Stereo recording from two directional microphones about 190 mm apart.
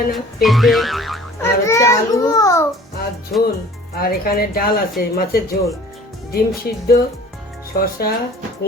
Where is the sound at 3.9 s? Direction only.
55° left (ahead or behind).